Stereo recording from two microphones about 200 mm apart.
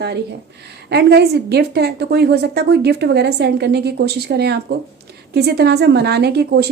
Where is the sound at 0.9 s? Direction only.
55° right (ahead or behind).